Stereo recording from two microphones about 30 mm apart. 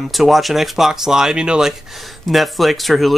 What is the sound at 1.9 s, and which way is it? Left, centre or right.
Speech, centre.